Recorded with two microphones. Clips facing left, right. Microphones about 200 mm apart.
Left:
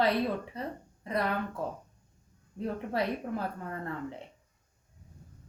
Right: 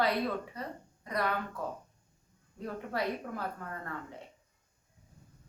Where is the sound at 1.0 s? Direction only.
25° left (ahead or behind).